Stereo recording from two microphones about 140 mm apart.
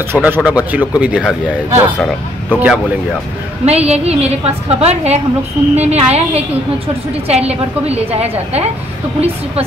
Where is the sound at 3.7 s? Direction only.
50° right (ahead or behind).